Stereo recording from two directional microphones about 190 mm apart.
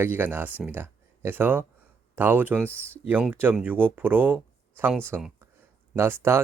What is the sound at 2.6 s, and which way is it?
Speech, 10° left (ahead or behind).